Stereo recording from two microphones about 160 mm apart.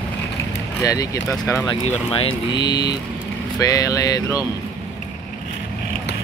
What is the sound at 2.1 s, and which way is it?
Speech, 30° left (ahead or behind).